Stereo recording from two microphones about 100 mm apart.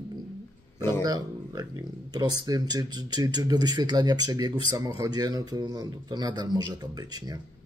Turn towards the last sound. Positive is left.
turn(degrees=-45)  # may be behind; listen again after turning